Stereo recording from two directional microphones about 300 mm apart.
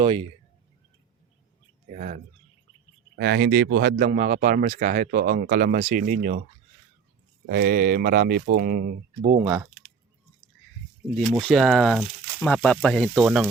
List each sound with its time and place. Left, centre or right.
0.0 s speech: centre
1.9 s speech: right
7.4 s speech: right
11.3 s speech: centre